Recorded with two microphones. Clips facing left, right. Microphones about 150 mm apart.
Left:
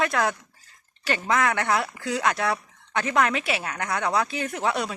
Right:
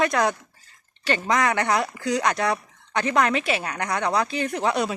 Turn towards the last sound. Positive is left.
turn(degrees=0)  # may be behind; listen again after turning